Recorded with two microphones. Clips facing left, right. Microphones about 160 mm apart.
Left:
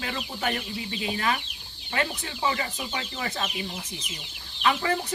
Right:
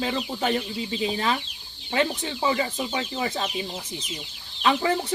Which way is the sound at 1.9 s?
25° right (ahead or behind).